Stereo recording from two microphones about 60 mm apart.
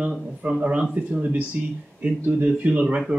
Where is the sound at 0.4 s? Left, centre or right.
Centre.